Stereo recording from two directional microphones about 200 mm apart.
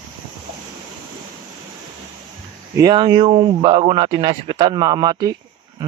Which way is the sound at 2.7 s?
20° right (ahead or behind).